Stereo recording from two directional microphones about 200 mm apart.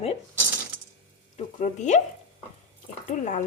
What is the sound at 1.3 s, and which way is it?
Speech, 35° left (ahead or behind).